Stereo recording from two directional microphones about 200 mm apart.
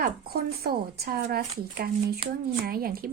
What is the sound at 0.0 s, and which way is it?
A woman's voice, 50° right (ahead or behind).